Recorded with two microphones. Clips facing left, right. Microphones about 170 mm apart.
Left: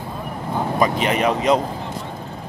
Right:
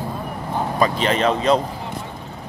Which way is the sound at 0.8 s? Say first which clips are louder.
Even; 15° left (ahead or behind).